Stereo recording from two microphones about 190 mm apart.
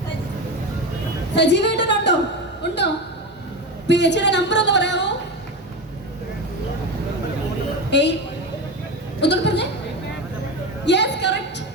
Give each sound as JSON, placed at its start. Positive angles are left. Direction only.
{"t": 1.4, "sound": "a woman's voice", "side_deg": 65}
{"t": 2.6, "sound": "a sound", "side_deg": 65}
{"t": 3.8, "sound": "a woman's voice", "side_deg": 65}
{"t": 7.9, "sound": "a woman's voice", "side_deg": 65}
{"t": 9.2, "sound": "chuckle", "side_deg": 65}
{"t": 10.8, "sound": "a sound", "side_deg": 65}